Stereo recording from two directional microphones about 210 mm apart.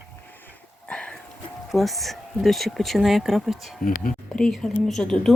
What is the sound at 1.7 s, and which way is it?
Speech, centre (ahead or behind).